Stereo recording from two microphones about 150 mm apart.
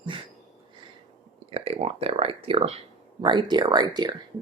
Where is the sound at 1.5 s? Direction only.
40° right (ahead or behind).